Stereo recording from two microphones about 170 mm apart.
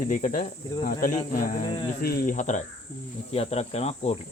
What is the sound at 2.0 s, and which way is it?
Speech, 65° left (ahead or behind).